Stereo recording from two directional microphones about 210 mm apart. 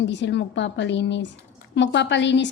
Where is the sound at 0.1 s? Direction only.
55° left (ahead or behind).